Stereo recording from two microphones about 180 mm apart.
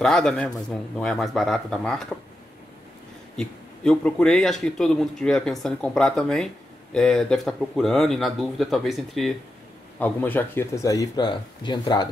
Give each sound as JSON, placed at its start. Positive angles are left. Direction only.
{"t": 0.0, "sound": "speech", "side_deg": 5}
{"t": 3.3, "sound": "speech", "side_deg": 5}